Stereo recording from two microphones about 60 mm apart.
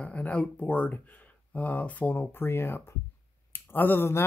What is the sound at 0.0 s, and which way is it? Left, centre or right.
Speech, left.